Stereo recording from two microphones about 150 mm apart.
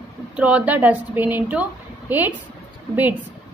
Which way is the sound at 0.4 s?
10° right (ahead or behind).